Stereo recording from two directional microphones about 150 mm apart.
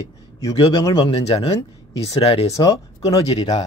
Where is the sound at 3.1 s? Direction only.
25° left (ahead or behind).